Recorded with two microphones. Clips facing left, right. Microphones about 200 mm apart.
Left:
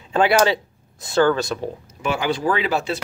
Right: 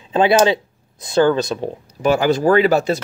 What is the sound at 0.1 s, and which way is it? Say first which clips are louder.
Speech: right 3 dB; 20° right (ahead or behind).